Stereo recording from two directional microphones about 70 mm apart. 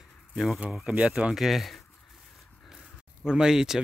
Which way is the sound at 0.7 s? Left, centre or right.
Centre.